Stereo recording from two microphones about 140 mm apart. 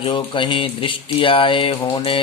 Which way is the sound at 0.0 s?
40° left (ahead or behind).